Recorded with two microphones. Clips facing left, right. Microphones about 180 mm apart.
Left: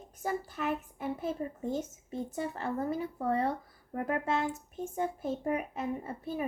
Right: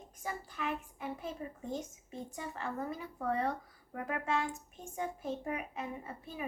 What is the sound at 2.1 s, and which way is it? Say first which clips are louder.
A child's voice: left 7 dB; 35° left (ahead or behind).